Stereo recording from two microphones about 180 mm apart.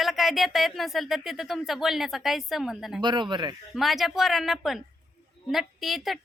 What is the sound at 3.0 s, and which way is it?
Speech, 25° right (ahead or behind).